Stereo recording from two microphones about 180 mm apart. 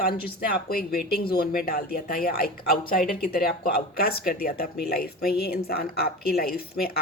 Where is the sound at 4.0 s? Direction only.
60° left (ahead or behind).